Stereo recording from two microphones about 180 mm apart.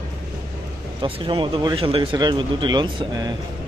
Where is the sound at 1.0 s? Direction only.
30° right (ahead or behind).